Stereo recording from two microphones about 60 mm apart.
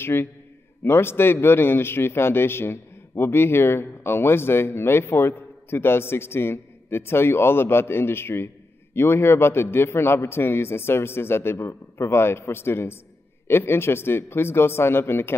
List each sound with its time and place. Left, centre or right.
0.0 s a man's voice: left